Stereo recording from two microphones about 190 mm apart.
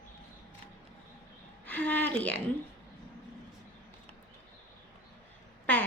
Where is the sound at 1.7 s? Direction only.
10° left (ahead or behind).